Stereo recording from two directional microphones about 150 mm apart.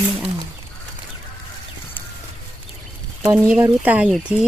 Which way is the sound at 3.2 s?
25° right (ahead or behind).